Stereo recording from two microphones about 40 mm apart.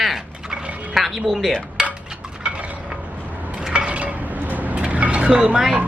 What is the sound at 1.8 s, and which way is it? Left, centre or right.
Dishes, right.